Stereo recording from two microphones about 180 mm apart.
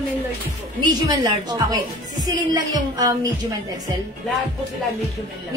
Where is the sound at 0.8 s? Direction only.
20° right (ahead or behind).